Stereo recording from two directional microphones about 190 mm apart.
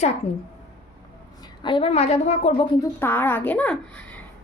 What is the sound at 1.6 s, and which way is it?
A woman's voice, 30° left (ahead or behind).